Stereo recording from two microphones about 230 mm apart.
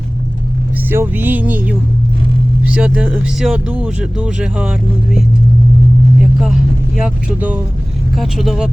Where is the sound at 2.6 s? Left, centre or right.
Centre.